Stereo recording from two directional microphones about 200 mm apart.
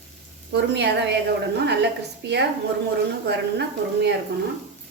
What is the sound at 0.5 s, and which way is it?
A woman's voice, 55° right (ahead or behind).